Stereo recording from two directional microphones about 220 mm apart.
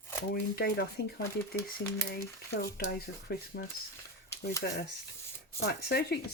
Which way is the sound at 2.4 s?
45° left (ahead or behind).